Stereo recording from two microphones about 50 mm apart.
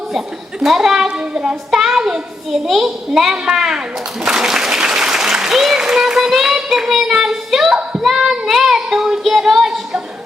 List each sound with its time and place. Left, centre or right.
0.6 s a child's voice: centre
1.7 s a child's voice: centre
8.4 s child singing: centre
9.2 s a sound: centre